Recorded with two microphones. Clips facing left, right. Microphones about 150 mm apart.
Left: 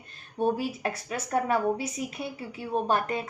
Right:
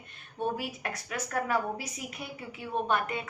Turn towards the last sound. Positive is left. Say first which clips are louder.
# left 3 dB
turn(degrees=35)  # may be behind; listen again after turning